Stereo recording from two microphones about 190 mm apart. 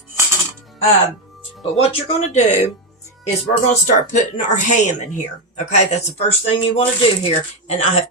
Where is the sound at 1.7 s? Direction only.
30° left (ahead or behind).